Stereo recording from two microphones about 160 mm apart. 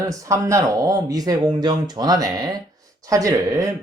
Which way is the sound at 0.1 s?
20° right (ahead or behind).